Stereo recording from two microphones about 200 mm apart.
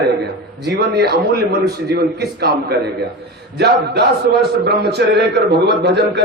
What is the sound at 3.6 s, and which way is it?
A man's voice, 55° right (ahead or behind).